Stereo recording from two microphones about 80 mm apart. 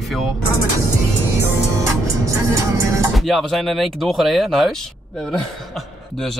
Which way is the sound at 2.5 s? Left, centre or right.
Right.